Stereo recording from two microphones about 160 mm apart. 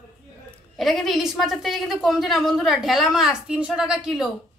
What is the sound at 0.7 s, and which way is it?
A woman's voice, centre (ahead or behind).